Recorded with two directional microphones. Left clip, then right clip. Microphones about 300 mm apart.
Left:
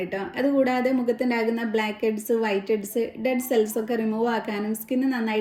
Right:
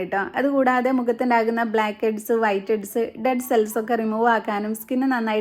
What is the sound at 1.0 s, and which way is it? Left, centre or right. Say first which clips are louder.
A woman's voice: right 4 dB; centre.